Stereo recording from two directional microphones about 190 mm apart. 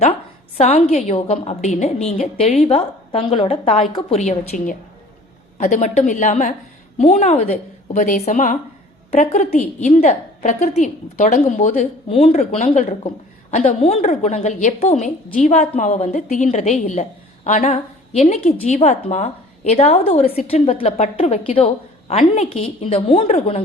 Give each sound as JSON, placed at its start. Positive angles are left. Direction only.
{"t": 0.0, "sound": "a sound", "side_deg": 30}
{"t": 0.9, "sound": "a woman's voice", "side_deg": 35}
{"t": 4.2, "sound": "a woman's voice", "side_deg": 40}